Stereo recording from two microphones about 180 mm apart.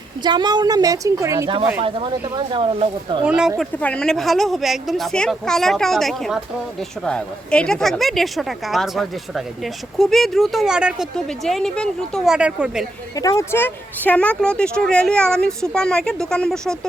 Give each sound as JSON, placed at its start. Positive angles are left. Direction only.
{"t": 0.2, "sound": "speech", "side_deg": -25}
{"t": 1.8, "sound": "speech", "side_deg": -30}
{"t": 3.2, "sound": "speech", "side_deg": -5}
{"t": 3.6, "sound": "speech", "side_deg": 5}
{"t": 13.1, "sound": "speech", "side_deg": 20}